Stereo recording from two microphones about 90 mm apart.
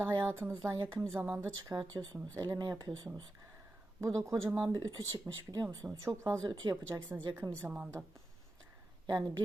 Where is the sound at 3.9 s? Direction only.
35° right (ahead or behind).